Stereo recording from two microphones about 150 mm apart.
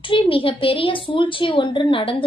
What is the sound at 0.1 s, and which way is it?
A woman's voice, 35° left (ahead or behind).